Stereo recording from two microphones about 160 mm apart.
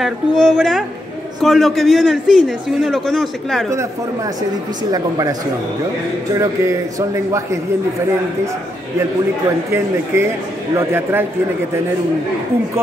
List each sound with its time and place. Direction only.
0.0 s a man's voice: centre (ahead or behind)
4.9 s speech: 25° right (ahead or behind)
6.3 s speech: 20° right (ahead or behind)
10.1 s speech: 15° right (ahead or behind)